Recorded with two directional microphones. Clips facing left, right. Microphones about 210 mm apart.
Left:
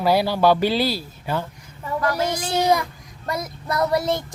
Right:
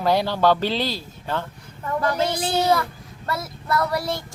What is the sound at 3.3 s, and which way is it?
Child singing, 15° left (ahead or behind).